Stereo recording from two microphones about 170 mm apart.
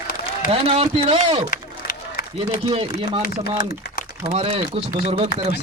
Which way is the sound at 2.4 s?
35° right (ahead or behind).